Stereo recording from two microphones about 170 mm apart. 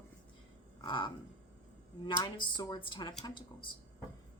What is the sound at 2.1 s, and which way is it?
A woman's voice, 25° left (ahead or behind).